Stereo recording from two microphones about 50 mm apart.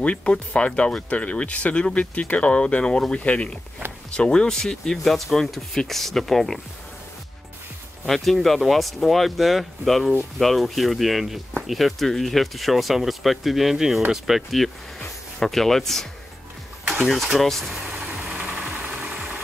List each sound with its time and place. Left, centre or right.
0.0 s speech: left; by 6.6 s centre
8.1 s speech: centre
15.0 s speech: centre
16.8 s a sound: right
17.1 s speech: centre
18.0 s vehicle: right